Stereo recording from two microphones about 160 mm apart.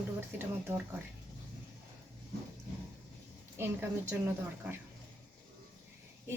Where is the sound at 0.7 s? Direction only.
15° right (ahead or behind).